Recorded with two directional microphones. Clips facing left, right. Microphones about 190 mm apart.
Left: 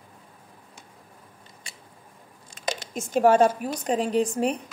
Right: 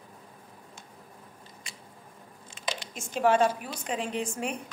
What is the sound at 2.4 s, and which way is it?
Speech, 40° left (ahead or behind).